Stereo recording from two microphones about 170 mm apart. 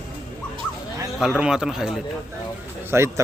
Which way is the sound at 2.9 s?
15° right (ahead or behind).